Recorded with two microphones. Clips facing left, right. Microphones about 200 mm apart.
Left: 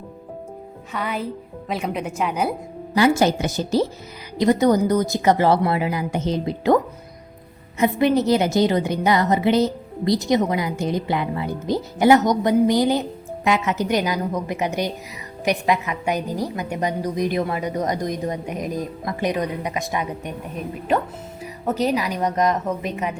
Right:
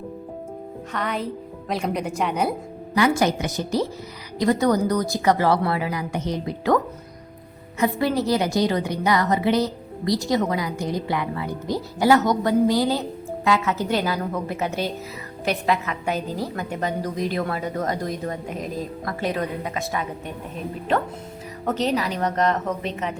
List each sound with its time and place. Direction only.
0.9 s speech: 5° left (ahead or behind)
2.9 s a woman's voice: 30° left (ahead or behind)
7.8 s a woman's voice: 20° left (ahead or behind)
21.7 s a woman's voice: 10° left (ahead or behind)